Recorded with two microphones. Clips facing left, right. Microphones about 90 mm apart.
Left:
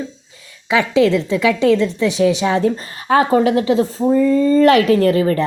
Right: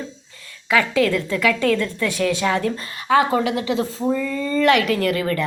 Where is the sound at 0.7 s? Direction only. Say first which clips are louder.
Left 4 dB; 25° left (ahead or behind).